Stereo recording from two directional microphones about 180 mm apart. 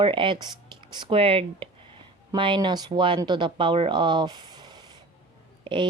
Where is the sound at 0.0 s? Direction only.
30° right (ahead or behind).